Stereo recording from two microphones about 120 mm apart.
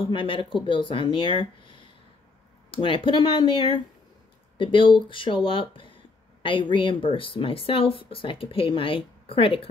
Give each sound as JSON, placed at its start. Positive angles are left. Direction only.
{"t": 0.1, "sound": "speech", "side_deg": 45}